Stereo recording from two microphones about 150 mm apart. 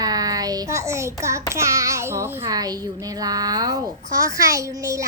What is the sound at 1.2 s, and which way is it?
A child's voice, 20° right (ahead or behind).